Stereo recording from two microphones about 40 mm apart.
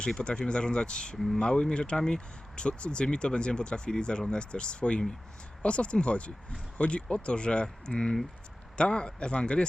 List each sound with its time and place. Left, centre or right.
0.0 s speech: left